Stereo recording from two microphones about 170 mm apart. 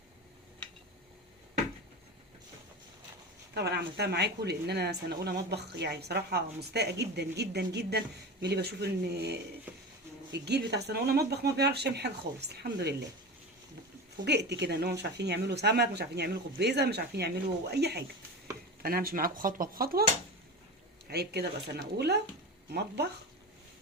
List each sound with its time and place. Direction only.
3.5 s speech: 80° right
14.3 s speech: 85° right
18.8 s speech: 60° right (ahead or behind)
21.1 s speech: 70° right (ahead or behind)